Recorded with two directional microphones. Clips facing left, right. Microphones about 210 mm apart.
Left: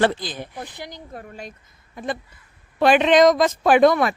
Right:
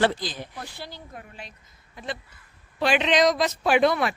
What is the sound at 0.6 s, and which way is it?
Speech, 15° left (ahead or behind).